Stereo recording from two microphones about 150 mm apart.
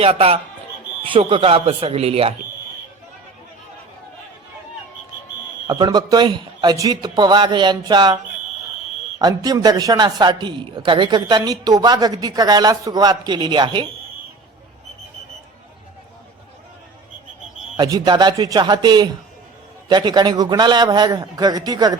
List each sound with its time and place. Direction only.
0.0 s speech: 40° right (ahead or behind)
5.6 s a man's voice: 25° right (ahead or behind)
17.7 s a man's voice: 25° right (ahead or behind)